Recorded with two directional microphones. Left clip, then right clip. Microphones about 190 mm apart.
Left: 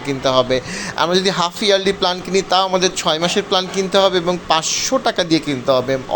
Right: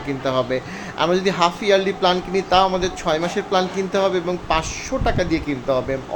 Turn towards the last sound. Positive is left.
turn(degrees=15)  # may be behind; listen again after turning